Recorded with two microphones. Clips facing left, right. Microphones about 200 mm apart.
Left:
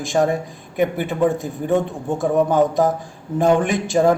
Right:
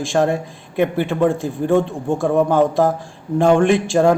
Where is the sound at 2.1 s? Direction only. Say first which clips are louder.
Right 1 dB; 20° left (ahead or behind).